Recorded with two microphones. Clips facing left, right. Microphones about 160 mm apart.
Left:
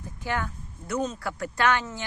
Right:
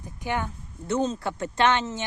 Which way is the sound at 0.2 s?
20° right (ahead or behind).